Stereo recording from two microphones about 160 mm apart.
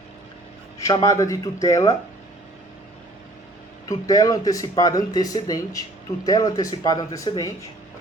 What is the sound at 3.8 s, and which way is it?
Speech, 20° left (ahead or behind).